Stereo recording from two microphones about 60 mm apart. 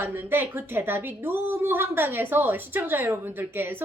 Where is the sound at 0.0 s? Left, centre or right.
Right.